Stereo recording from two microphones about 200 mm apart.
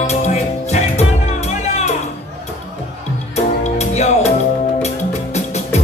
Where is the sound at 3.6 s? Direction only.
35° left (ahead or behind).